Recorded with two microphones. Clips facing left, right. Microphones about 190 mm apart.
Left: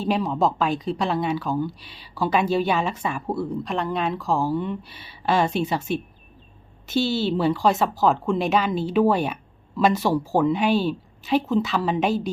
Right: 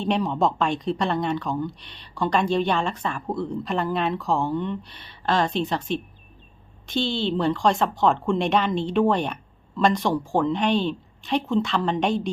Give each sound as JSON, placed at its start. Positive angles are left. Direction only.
{"t": 0.0, "sound": "speech", "side_deg": 0}